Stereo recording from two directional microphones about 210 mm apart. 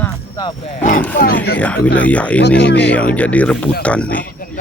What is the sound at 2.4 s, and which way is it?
Speech, 55° left (ahead or behind).